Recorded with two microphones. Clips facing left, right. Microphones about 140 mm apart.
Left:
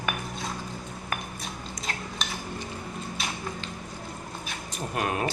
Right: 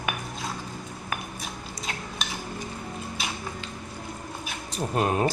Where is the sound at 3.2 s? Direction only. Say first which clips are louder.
Right 1 dB; centre (ahead or behind).